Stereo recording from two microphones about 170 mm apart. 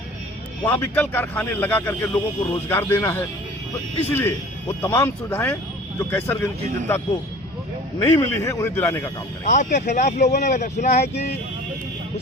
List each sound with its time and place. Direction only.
0.6 s speech: 10° left (ahead or behind)
9.4 s speech: 45° left (ahead or behind)